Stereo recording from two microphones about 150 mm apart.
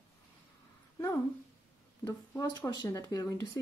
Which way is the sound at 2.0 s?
20° left (ahead or behind).